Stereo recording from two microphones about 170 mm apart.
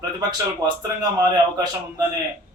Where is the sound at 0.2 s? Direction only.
20° right (ahead or behind).